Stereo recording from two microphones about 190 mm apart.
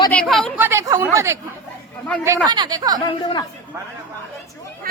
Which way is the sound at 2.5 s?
20° right (ahead or behind).